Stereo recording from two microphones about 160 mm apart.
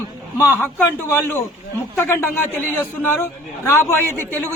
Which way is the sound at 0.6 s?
10° left (ahead or behind).